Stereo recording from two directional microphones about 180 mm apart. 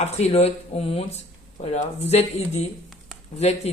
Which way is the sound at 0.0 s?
35° left (ahead or behind).